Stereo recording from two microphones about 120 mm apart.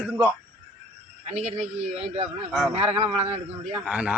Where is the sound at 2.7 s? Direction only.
55° right (ahead or behind).